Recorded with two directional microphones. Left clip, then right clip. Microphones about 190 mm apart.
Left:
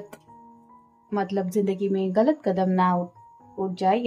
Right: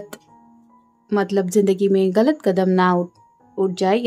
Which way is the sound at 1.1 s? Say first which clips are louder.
Right 7 dB; 35° right (ahead or behind).